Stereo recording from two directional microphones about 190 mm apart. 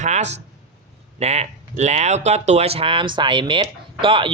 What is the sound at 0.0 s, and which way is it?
Speech, 40° right (ahead or behind).